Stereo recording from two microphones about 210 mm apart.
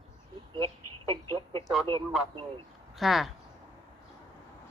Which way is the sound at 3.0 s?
Centre (ahead or behind).